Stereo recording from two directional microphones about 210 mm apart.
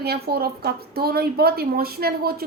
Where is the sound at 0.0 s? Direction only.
50° right (ahead or behind).